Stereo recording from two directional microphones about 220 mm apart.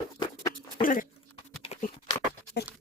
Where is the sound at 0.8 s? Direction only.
40° left (ahead or behind).